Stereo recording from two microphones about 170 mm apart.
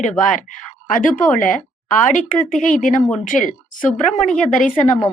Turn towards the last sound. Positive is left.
turn(degrees=50)  # may be behind; listen again after turning